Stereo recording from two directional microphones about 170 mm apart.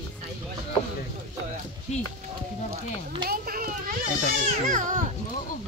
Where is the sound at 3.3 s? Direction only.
60° right (ahead or behind).